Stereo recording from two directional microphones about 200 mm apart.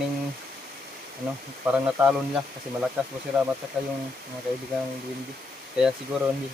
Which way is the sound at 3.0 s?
5° right (ahead or behind).